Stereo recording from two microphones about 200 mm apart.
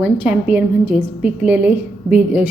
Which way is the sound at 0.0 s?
5° right (ahead or behind).